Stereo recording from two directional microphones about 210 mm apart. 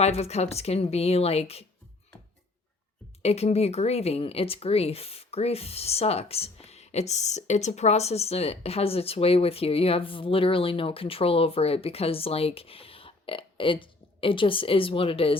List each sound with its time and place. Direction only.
0.0 s speech: 30° left (ahead or behind)
3.2 s speech: 30° left (ahead or behind)